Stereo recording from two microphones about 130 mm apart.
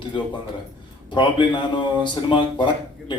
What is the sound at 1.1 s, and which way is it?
Speech, 40° left (ahead or behind).